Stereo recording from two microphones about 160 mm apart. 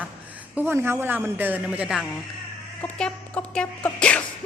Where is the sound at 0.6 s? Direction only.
15° right (ahead or behind).